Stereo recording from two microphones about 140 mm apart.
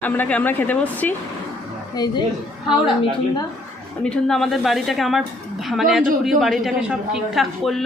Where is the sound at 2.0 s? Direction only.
30° left (ahead or behind).